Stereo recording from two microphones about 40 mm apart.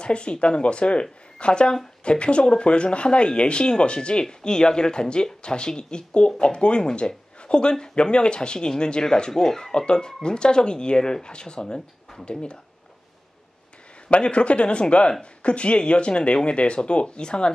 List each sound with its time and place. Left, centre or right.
0.0 s speech: left
14.0 s speech: left